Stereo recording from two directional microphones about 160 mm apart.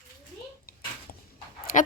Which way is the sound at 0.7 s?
70° left (ahead or behind).